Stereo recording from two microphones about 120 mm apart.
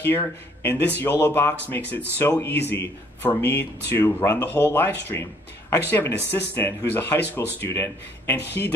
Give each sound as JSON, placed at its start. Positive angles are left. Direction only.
{"t": 0.1, "sound": "speech", "side_deg": 20}